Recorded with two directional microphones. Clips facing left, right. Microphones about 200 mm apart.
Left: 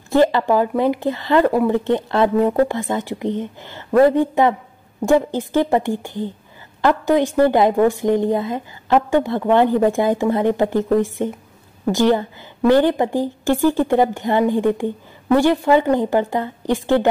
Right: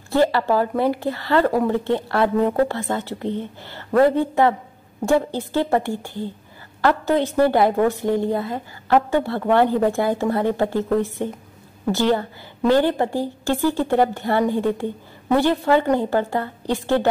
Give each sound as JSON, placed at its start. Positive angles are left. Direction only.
{"t": 0.1, "sound": "a woman's voice", "side_deg": 15}